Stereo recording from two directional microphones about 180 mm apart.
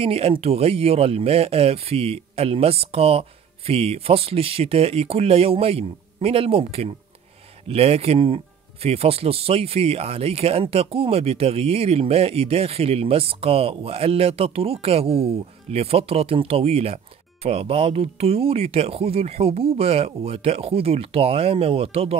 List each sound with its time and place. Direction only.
0.0 s speech: 35° right (ahead or behind)